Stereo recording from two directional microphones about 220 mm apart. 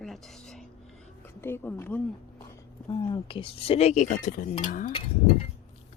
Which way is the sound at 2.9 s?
20° left (ahead or behind).